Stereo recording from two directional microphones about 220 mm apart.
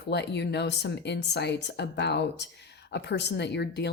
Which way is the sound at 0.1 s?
50° left (ahead or behind).